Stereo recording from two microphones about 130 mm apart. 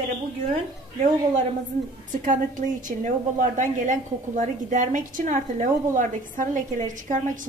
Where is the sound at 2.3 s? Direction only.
80° right.